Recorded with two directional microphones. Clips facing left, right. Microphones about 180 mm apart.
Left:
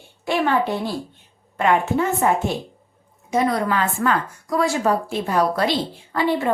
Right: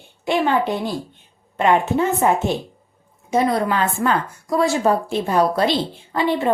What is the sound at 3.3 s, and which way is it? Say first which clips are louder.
A woman's voice: right 2 dB; 25° right (ahead or behind).